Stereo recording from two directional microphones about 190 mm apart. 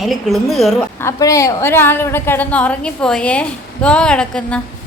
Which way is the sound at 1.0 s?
15° left (ahead or behind).